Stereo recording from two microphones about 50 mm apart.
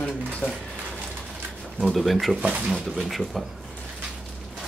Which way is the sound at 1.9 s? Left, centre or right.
Centre.